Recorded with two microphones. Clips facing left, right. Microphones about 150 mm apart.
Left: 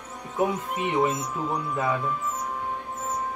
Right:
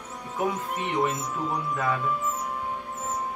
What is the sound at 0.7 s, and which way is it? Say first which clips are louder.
Speech: left 2 dB; 10° left (ahead or behind).